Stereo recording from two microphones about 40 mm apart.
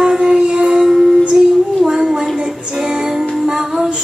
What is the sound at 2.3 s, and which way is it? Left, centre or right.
Music, centre.